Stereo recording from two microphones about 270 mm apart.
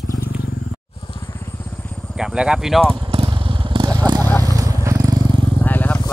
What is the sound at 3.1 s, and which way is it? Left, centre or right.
Motorcycle, centre.